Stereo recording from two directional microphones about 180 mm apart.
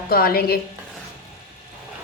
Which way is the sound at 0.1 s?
55° left (ahead or behind).